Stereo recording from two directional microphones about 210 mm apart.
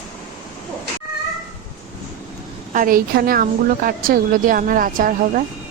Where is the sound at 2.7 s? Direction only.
40° right (ahead or behind).